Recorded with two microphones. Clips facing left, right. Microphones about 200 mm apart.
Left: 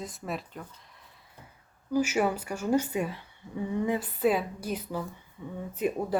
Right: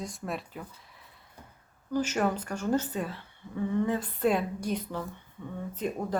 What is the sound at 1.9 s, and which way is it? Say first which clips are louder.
Speech: left 2 dB; 10° left (ahead or behind).